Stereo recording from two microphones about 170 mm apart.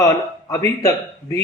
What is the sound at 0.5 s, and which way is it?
Speech, 20° left (ahead or behind).